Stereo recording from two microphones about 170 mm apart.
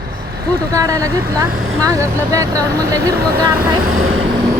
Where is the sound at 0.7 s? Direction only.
20° right (ahead or behind).